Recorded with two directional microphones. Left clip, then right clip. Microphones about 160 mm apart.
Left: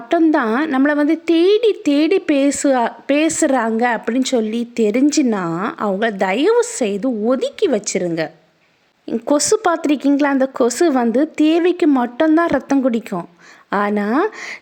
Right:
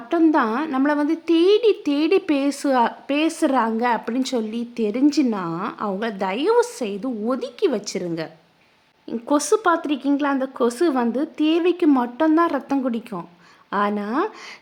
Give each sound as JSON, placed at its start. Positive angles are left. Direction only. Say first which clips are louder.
{"t": 0.3, "sound": "a woman's voice", "louder": "left 3 dB", "side_deg": 30}